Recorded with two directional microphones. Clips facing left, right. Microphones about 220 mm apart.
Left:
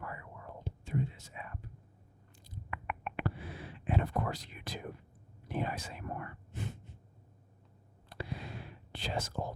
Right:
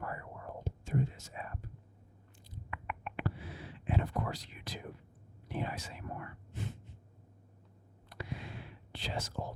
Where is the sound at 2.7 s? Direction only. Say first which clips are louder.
Left 2 dB; 60° left (ahead or behind).